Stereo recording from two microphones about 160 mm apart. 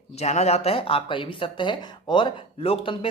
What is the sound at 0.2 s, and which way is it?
Speech, 45° left (ahead or behind).